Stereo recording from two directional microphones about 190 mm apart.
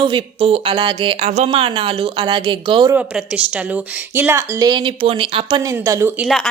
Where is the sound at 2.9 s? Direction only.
5° right (ahead or behind).